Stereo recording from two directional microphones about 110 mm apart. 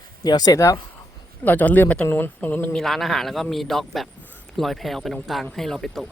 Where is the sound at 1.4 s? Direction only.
15° left (ahead or behind).